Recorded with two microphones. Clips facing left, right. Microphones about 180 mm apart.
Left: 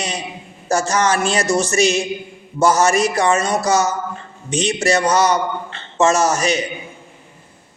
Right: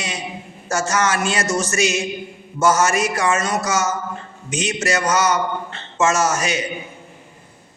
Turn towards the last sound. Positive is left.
turn(degrees=35)  # may be behind; listen again after turning